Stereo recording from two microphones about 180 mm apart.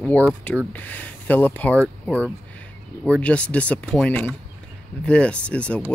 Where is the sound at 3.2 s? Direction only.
5° left (ahead or behind).